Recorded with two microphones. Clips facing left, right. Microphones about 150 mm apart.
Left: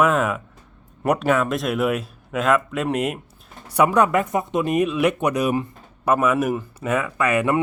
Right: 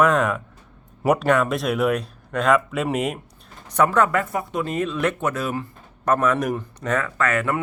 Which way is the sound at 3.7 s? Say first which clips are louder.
Left 1 dB; 15° left (ahead or behind).